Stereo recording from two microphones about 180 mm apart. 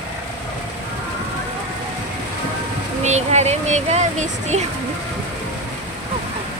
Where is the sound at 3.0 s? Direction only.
40° right (ahead or behind).